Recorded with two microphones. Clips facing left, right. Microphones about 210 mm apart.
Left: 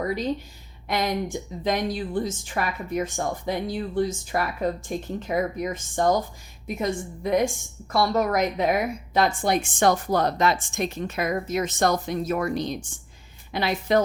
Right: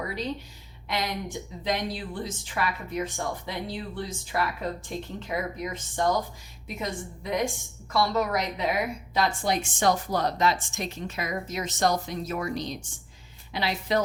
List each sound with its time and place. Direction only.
0.9 s a woman's voice: 45° left (ahead or behind)